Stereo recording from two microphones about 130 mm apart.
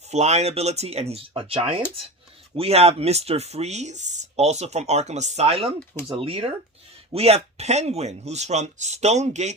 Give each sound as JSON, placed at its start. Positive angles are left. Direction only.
{"t": 0.1, "sound": "speech", "side_deg": -60}